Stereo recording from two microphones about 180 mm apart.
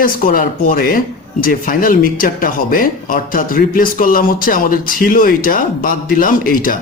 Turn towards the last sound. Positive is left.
turn(degrees=50)  # may be behind; listen again after turning